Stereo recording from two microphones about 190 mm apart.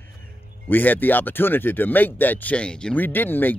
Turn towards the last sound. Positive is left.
turn(degrees=10)  # may be behind; listen again after turning